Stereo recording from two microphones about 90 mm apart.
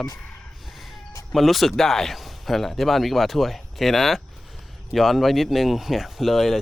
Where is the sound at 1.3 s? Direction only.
Centre (ahead or behind).